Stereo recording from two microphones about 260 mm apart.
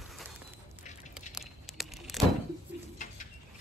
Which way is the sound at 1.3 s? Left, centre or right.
Centre.